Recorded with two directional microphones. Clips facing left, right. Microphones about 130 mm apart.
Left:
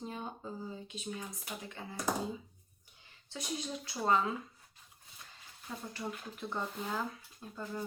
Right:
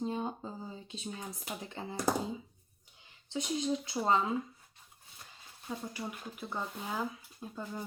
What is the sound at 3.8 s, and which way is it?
Speech, 20° right (ahead or behind).